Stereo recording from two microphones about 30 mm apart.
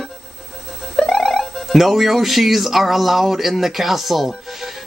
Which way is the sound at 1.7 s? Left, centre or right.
Centre.